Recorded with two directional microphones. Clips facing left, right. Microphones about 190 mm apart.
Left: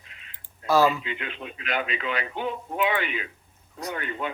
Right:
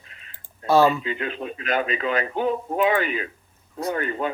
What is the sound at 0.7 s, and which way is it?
Speech, 30° right (ahead or behind).